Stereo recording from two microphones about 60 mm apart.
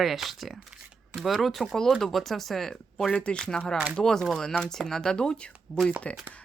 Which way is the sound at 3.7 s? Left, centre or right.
Centre.